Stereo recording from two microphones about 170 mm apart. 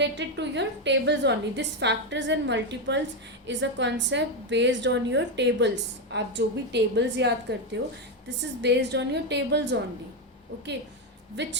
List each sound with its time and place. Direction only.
0.0 s a woman's voice: 90° right
11.4 s a woman's voice: 90° right